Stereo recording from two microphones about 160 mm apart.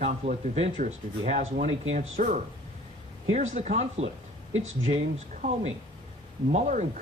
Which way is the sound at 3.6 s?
45° right (ahead or behind).